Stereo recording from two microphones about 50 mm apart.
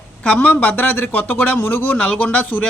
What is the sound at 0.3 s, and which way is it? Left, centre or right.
Speech, left.